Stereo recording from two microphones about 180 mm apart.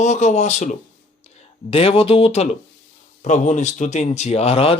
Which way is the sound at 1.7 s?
30° left (ahead or behind).